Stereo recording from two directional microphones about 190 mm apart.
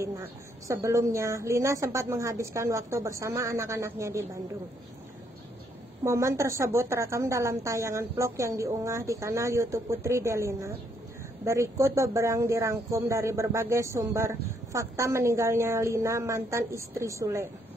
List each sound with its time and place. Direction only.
0.0 s speech: 15° right (ahead or behind)
6.0 s speech: 15° right (ahead or behind)